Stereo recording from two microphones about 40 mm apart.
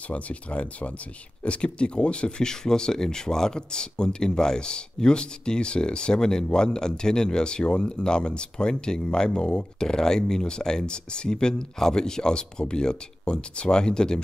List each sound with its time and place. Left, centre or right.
0.1 s speech: left